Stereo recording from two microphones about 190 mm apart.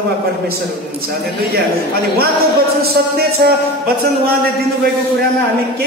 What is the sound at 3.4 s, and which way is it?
Speech, 55° right (ahead or behind).